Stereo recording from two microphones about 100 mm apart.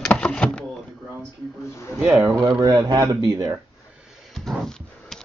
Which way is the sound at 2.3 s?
40° right (ahead or behind).